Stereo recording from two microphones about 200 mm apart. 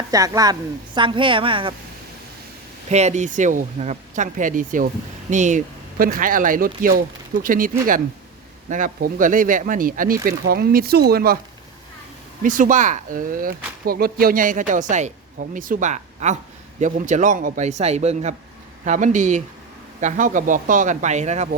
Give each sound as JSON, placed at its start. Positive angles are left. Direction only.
{"t": 0.1, "sound": "a woman's voice", "side_deg": -20}
{"t": 2.9, "sound": "speech", "side_deg": -35}
{"t": 12.4, "sound": "speech", "side_deg": -40}